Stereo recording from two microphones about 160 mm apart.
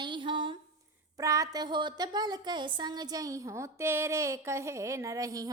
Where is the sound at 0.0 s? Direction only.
30° right (ahead or behind).